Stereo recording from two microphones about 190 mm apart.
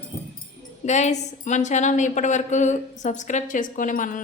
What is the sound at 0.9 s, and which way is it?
A woman's voice, 40° left (ahead or behind).